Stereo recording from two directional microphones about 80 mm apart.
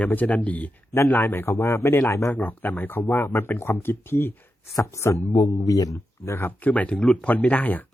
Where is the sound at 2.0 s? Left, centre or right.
Left.